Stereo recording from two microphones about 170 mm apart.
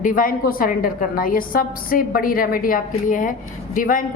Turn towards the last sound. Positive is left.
turn(degrees=50)  # may be behind; listen again after turning